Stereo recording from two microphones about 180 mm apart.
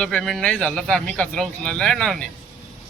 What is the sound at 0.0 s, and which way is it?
Speech, 5° left (ahead or behind).